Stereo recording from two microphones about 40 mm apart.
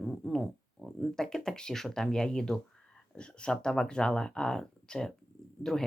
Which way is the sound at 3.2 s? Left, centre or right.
Left.